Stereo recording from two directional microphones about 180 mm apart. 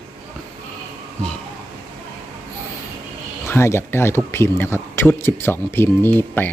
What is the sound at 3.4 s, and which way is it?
Speech, 15° left (ahead or behind).